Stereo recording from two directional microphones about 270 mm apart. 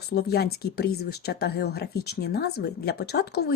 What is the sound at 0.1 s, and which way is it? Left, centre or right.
Speech, left.